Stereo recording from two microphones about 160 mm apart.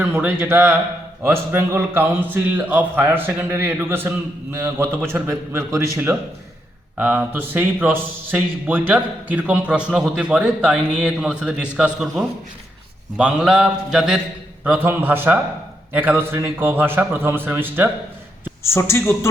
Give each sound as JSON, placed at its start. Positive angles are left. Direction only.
{"t": 0.0, "sound": "a man's voice", "side_deg": -10}
{"t": 6.9, "sound": "a man's voice", "side_deg": -10}
{"t": 11.9, "sound": "mantra", "side_deg": 0}
{"t": 14.6, "sound": "a man's voice", "side_deg": -10}
{"t": 18.6, "sound": "speech", "side_deg": 15}